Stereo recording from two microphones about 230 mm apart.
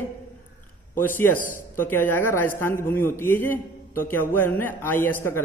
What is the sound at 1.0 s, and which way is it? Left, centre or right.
A man's voice, centre.